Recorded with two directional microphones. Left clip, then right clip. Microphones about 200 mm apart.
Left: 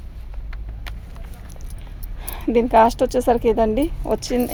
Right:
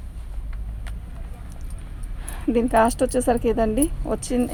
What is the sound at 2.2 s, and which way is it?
Speech, 45° left (ahead or behind).